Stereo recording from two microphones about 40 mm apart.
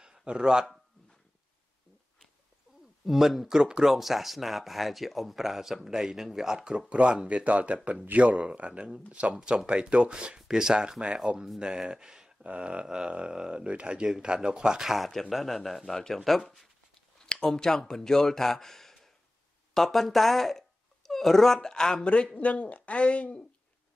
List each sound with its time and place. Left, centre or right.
0.0 s speech: right
3.1 s speech: centre
3.8 s speech: centre
6.9 s speech: right
8.2 s speech: right
11.1 s speech: centre
11.6 s speech: centre
12.4 s speech: right
12.8 s speech: centre
15.0 s speech: centre
17.6 s speech: centre
22.3 s speech: left